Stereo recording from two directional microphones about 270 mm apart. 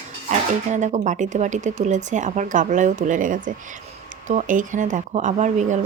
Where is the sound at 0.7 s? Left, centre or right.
Right.